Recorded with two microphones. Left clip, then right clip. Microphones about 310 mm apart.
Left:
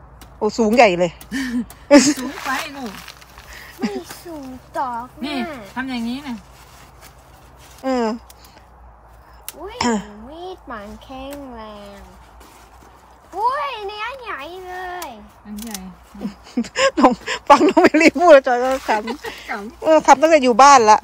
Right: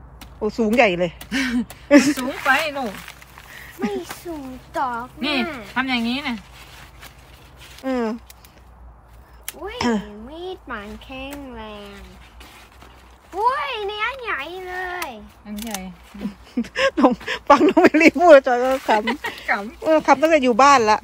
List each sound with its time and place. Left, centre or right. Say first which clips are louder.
0.4 s speech: left 4 dB; centre
3.5 s a sound: even; centre
4.7 s a child's voice: even; centre
7.8 s speech: left 4 dB; centre
9.8 s speech: left 2 dB; centre
10.3 s speech: right 1 dB; centre
13.3 s a child's voice: even; centre
16.2 s speech: left 2 dB; centre